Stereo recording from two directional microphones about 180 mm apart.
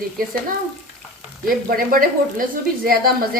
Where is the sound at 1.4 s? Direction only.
55° right (ahead or behind).